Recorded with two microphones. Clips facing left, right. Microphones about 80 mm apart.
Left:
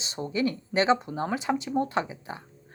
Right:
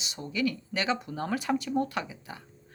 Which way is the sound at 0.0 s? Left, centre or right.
Left.